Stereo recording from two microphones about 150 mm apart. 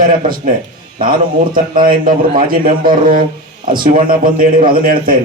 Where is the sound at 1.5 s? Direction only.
70° right (ahead or behind).